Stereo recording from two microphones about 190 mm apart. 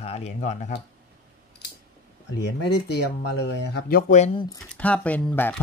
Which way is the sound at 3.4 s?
60° left (ahead or behind).